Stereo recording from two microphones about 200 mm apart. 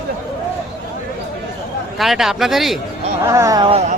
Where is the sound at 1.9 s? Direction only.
Centre (ahead or behind).